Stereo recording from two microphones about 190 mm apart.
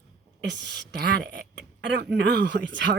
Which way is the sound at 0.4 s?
65° right (ahead or behind).